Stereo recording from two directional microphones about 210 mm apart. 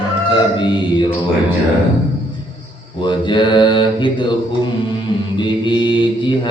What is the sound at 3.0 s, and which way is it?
Mantra, 20° left (ahead or behind).